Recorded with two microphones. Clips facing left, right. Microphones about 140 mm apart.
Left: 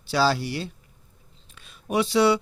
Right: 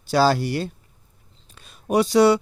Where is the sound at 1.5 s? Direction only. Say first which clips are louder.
Right 5 dB; 40° right (ahead or behind).